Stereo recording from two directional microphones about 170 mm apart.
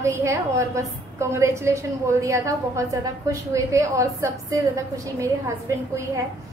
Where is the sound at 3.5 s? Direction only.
15° right (ahead or behind).